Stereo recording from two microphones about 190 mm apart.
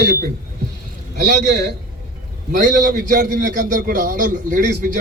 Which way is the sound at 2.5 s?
45° right (ahead or behind).